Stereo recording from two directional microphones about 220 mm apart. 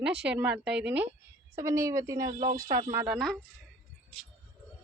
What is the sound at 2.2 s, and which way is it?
Speech, 35° right (ahead or behind).